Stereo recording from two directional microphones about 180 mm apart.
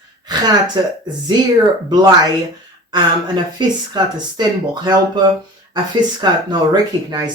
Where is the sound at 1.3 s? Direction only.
25° right (ahead or behind).